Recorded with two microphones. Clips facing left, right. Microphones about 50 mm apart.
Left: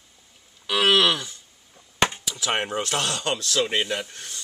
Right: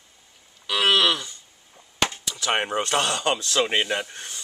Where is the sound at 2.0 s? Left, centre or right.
Left.